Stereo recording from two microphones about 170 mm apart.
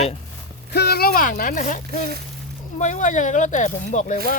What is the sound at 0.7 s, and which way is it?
Speech, 70° left (ahead or behind).